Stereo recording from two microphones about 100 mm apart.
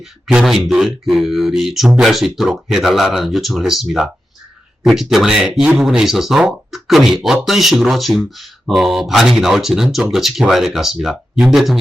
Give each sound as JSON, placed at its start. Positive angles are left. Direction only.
{"t": 0.0, "sound": "speech", "side_deg": -5}